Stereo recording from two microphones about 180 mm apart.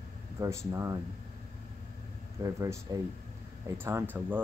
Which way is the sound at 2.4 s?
20° right (ahead or behind).